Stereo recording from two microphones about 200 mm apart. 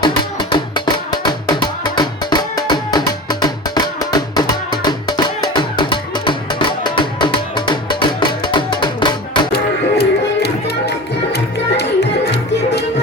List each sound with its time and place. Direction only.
0.0 s music: 20° left (ahead or behind)
10.0 s music: 55° left (ahead or behind)